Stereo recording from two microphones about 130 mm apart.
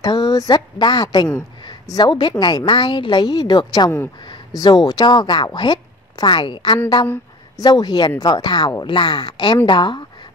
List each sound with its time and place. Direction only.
0.0 s a woman's voice: 35° left (ahead or behind)